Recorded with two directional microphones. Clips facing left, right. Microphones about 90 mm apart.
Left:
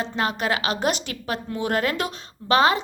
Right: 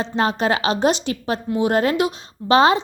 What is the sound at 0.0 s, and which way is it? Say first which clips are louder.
A woman's voice: right 5 dB; 30° right (ahead or behind).